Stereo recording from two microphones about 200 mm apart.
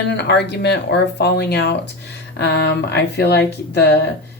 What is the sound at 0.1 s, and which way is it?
Speech, 60° left (ahead or behind).